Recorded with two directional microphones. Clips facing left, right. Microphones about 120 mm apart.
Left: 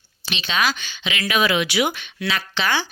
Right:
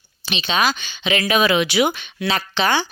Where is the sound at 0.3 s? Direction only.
20° right (ahead or behind).